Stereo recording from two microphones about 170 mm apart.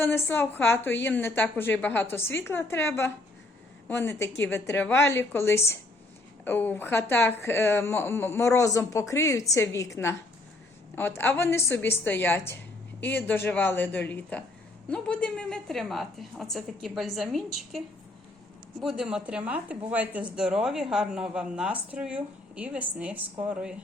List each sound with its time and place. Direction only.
0.0 s a woman's voice: 10° left (ahead or behind); by 23.7 s 5° right (ahead or behind)